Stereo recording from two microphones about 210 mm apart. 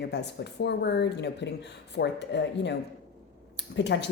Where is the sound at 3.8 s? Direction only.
55° left (ahead or behind).